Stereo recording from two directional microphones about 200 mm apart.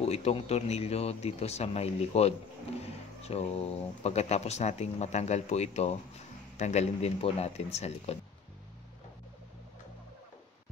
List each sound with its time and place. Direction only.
0.0 s speech: 30° left (ahead or behind)